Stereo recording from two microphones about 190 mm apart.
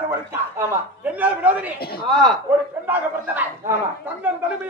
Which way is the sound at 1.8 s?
55° left (ahead or behind).